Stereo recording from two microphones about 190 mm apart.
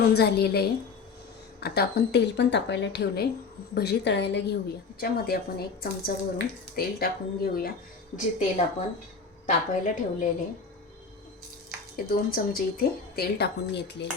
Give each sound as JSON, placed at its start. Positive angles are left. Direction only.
{"t": 0.1, "sound": "a woman's voice", "side_deg": 60}
{"t": 8.1, "sound": "a woman's voice", "side_deg": 40}
{"t": 11.9, "sound": "a woman's voice", "side_deg": 50}